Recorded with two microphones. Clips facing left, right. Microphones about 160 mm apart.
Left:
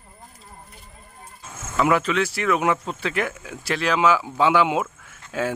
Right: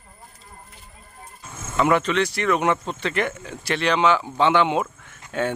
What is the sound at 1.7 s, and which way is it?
Speech, 5° left (ahead or behind).